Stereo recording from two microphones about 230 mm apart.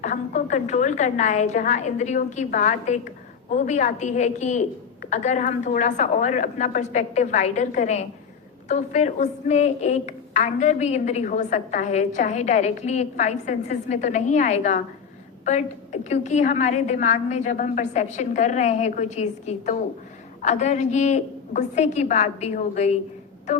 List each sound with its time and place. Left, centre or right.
0.0 s a woman's voice: left